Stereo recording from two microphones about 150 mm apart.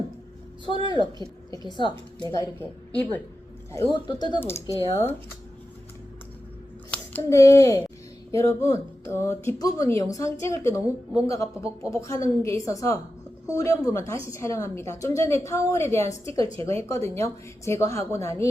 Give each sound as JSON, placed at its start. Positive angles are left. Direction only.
{"t": 0.9, "sound": "a woman's voice", "side_deg": 30}
{"t": 2.9, "sound": "a woman's voice", "side_deg": 10}
{"t": 3.9, "sound": "a woman's voice", "side_deg": 30}
{"t": 4.4, "sound": "a woman's voice", "side_deg": 15}
{"t": 6.9, "sound": "a child's voice", "side_deg": 15}